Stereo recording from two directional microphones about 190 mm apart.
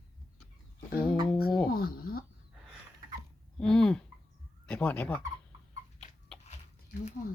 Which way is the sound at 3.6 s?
5° left (ahead or behind).